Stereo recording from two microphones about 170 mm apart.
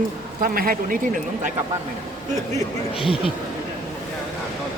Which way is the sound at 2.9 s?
30° left (ahead or behind).